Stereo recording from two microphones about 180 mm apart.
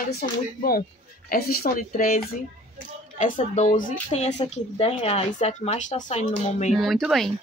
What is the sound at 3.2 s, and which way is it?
Speech, 45° left (ahead or behind).